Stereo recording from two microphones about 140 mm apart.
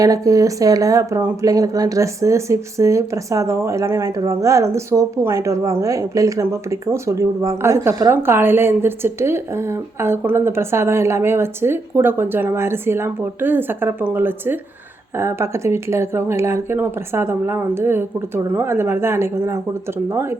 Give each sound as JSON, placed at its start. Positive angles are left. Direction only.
{"t": 0.0, "sound": "a woman's voice", "side_deg": -25}